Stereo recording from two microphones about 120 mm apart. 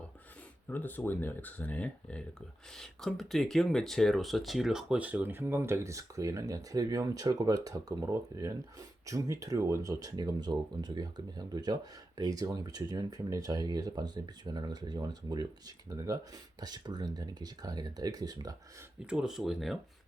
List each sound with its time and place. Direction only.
0.7 s speech: 15° left (ahead or behind); by 18.5 s 35° right (ahead or behind)
19.0 s speech: 5° right (ahead or behind)